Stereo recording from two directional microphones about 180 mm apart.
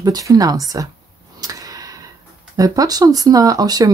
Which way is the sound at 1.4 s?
20° right (ahead or behind).